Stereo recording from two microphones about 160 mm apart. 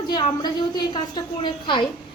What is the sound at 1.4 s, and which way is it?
Speech, 30° left (ahead or behind).